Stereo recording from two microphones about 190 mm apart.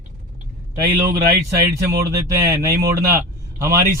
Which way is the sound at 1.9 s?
15° right (ahead or behind).